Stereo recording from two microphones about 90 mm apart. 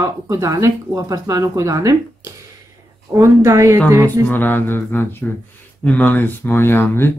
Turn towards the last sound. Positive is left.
turn(degrees=25)  # may be behind; listen again after turning